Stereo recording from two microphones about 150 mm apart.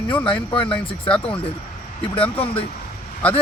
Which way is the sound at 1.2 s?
40° left (ahead or behind).